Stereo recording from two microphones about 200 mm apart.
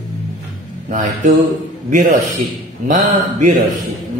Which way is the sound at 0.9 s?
40° right (ahead or behind).